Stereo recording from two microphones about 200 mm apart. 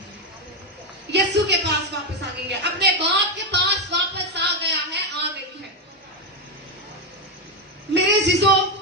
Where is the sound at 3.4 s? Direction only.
55° right (ahead or behind).